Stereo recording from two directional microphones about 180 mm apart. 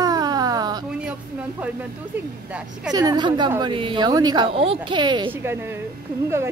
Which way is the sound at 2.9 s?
25° right (ahead or behind).